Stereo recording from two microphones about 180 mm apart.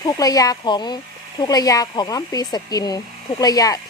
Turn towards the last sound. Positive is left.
turn(degrees=20)  # may be behind; listen again after turning